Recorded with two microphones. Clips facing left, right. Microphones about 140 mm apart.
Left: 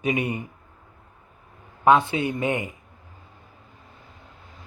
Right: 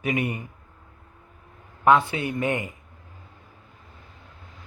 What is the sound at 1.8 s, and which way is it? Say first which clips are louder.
Speech: left 1 dB; 20° left (ahead or behind).